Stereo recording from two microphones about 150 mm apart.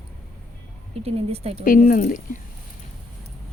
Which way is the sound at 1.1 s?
45° right (ahead or behind).